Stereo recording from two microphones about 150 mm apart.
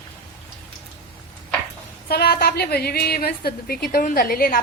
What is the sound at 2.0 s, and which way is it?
A woman's voice, 90° left.